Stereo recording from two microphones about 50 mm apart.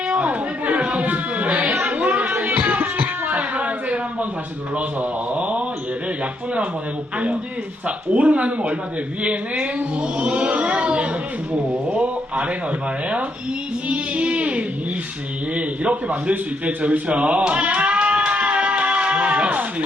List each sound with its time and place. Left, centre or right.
0.1 s a sound: right
1.8 s music: right
4.9 s a man's voice: right
7.9 s speech: right
13.8 s a sound: right
15.5 s speech: right
16.3 s music: right